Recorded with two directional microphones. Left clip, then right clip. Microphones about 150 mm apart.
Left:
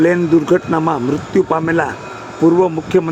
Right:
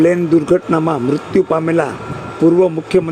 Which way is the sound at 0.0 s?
15° right (ahead or behind).